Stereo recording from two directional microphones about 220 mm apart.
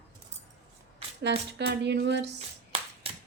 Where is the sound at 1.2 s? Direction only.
50° right (ahead or behind).